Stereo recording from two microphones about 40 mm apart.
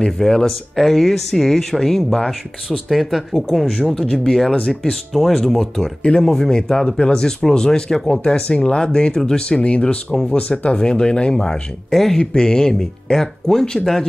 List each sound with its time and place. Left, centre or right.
0.2 s speech: centre
5.1 s speech: centre
8.2 s speech: left
11.9 s speech: centre
12.2 s speech: centre